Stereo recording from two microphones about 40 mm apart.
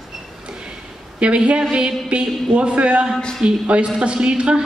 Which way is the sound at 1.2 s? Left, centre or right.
Right.